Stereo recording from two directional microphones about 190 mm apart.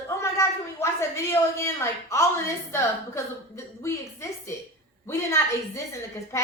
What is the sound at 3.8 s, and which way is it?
A woman's voice, 15° left (ahead or behind).